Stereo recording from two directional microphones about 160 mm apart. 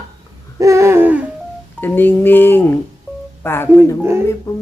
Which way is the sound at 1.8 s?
10° left (ahead or behind).